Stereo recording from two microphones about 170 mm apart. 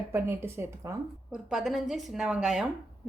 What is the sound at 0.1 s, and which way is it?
Speech, 15° right (ahead or behind).